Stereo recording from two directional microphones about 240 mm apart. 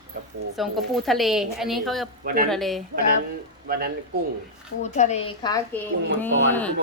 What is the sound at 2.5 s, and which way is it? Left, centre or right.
Speech, centre.